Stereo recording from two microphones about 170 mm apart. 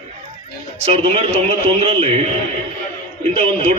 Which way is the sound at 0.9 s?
35° right (ahead or behind).